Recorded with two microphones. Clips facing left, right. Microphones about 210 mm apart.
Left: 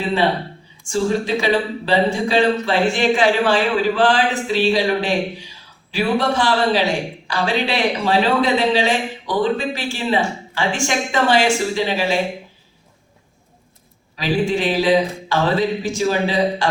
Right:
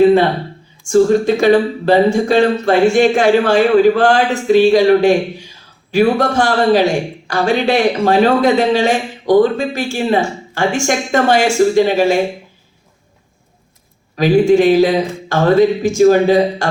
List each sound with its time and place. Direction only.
0.0 s speech: 45° right (ahead or behind)
14.2 s speech: 45° right (ahead or behind)